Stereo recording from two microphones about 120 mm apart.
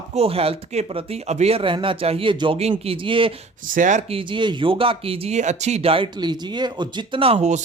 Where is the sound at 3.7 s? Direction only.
90° right.